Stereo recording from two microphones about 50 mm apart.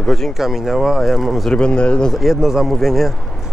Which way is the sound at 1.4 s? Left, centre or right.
Centre.